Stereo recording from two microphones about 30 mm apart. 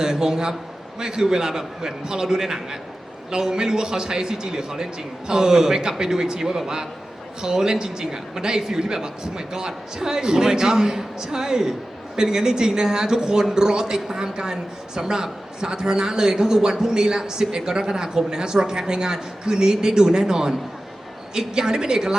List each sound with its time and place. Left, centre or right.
0.0 s a woman's voice: centre